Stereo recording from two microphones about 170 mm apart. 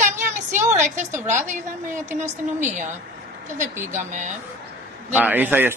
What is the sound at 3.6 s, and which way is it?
Speech, 45° right (ahead or behind).